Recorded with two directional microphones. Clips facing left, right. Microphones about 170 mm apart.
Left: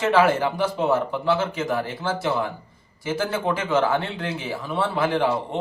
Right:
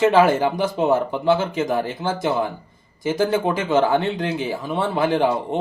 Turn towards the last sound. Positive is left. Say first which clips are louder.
# right 3 dB
turn(degrees=-15)  # may be behind; listen again after turning